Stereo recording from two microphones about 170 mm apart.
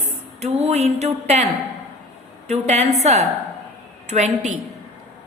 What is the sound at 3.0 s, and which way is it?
A man's voice, 40° right (ahead or behind).